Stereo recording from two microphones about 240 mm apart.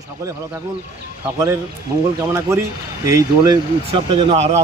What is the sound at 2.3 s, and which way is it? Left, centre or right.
A man's voice, centre.